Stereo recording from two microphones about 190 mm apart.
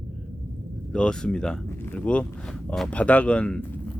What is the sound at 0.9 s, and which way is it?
Speech, 5° left (ahead or behind).